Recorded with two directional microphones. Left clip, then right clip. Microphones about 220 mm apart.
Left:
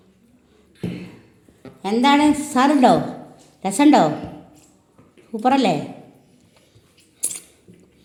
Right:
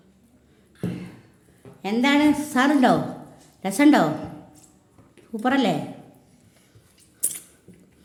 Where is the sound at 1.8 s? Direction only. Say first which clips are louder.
Left 4 dB; 5° right (ahead or behind).